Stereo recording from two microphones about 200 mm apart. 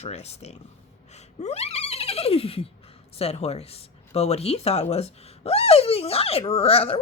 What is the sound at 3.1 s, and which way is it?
Speech, 30° left (ahead or behind).